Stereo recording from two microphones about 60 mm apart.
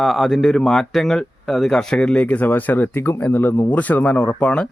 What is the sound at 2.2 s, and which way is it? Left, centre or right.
A man's voice, left.